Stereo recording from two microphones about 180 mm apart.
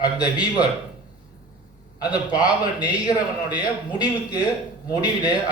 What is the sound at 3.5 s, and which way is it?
A man's voice, 20° left (ahead or behind).